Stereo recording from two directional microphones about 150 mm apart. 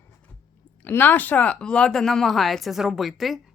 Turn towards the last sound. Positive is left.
turn(degrees=0)  # may be behind; listen again after turning